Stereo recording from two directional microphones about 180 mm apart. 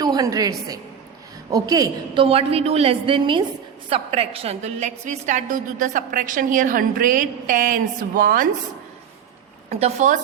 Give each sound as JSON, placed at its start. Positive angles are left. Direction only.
{"t": 0.0, "sound": "a woman's voice", "side_deg": -20}
{"t": 2.2, "sound": "a woman's voice", "side_deg": -35}
{"t": 9.6, "sound": "a woman's voice", "side_deg": -35}